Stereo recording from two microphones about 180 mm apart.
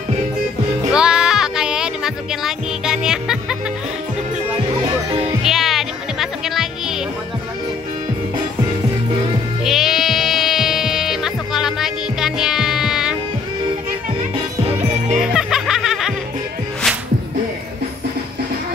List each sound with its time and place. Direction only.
0.9 s music: 5° right (ahead or behind)
4.8 s music: 30° right (ahead or behind)
5.4 s music: centre (ahead or behind)
9.7 s music: centre (ahead or behind)
15.3 s music: centre (ahead or behind)